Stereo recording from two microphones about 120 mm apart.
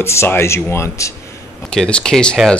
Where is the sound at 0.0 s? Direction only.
20° left (ahead or behind).